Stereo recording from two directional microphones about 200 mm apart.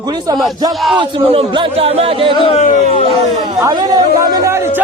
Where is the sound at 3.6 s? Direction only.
20° right (ahead or behind).